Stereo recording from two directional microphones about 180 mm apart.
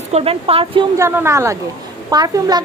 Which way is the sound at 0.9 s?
15° right (ahead or behind).